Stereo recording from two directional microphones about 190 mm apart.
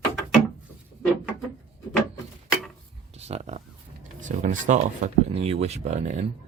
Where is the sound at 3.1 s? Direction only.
35° right (ahead or behind).